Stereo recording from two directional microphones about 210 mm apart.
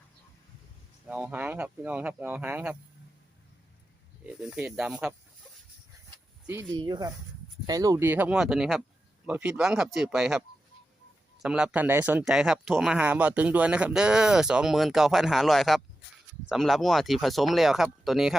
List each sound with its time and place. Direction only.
1.0 s speech: 5° right (ahead or behind)
4.3 s speech: 5° right (ahead or behind)
6.7 s speech: 20° right (ahead or behind); by 10.4 s centre (ahead or behind)
11.4 s speech: 5° right (ahead or behind)